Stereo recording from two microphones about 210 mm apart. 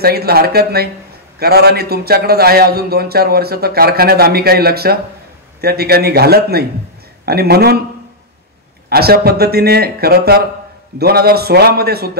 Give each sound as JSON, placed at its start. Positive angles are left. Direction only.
{"t": 0.0, "sound": "a man's voice", "side_deg": -45}
{"t": 8.8, "sound": "a man's voice", "side_deg": -50}